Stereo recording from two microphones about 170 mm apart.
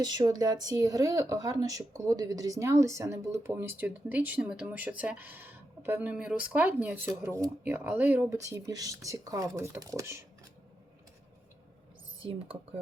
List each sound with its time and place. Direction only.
0.0 s speech: 25° right (ahead or behind)
12.2 s speech: 30° right (ahead or behind)